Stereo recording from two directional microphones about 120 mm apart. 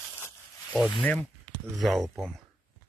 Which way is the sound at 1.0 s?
15° left (ahead or behind).